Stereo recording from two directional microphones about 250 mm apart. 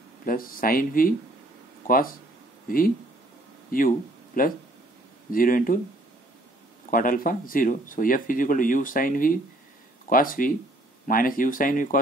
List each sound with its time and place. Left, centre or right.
0.2 s speech: left
3.7 s speech: left
6.9 s speech: left